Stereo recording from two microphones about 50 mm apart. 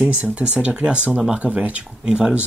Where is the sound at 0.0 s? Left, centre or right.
Right.